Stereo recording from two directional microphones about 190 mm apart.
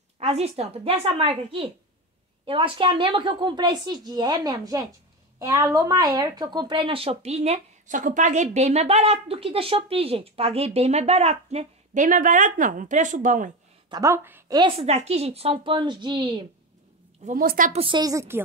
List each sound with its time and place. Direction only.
0.2 s a woman's voice: 35° right (ahead or behind)
13.8 s a woman's voice: 20° right (ahead or behind)
14.6 s speech: 35° right (ahead or behind)
17.2 s a woman's voice: 45° right (ahead or behind)
17.7 s speech: 25° right (ahead or behind)